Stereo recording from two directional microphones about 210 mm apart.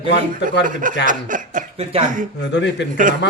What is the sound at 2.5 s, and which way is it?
Speech, 55° left (ahead or behind).